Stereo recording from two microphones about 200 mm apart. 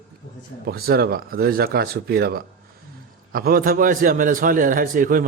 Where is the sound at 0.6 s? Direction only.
50° right (ahead or behind).